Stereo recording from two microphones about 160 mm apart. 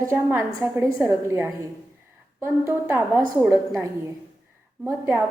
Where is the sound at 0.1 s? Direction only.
15° right (ahead or behind).